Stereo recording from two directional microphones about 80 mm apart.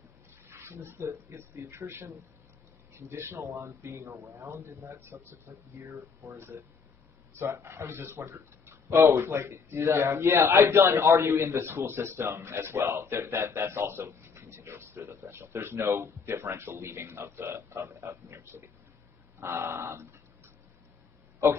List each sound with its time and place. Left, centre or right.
0.5 s a man's voice: right